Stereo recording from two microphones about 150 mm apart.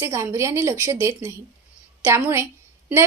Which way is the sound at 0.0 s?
20° right (ahead or behind).